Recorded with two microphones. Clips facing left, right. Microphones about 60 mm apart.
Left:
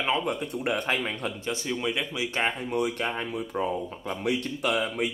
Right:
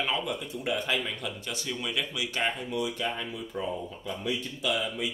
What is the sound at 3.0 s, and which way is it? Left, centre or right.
Speech, left.